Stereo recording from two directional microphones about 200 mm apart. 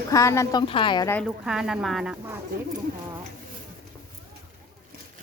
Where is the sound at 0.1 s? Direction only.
15° left (ahead or behind).